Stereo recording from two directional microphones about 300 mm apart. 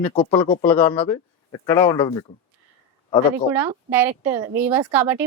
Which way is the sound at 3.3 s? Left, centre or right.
Centre.